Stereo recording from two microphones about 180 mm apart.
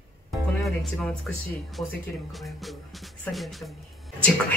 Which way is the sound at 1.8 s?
Centre (ahead or behind).